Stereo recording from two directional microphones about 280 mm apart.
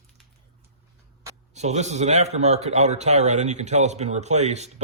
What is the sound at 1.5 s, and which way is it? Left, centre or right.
Speech, right.